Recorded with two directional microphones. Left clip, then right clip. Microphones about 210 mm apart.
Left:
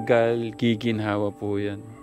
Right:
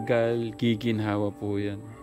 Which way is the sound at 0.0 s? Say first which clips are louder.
Left 4 dB; 15° left (ahead or behind).